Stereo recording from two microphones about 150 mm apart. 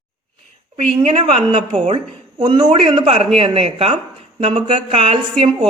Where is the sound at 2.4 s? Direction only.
30° right (ahead or behind).